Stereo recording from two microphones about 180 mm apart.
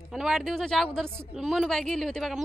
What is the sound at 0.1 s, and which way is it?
A woman's voice, centre (ahead or behind).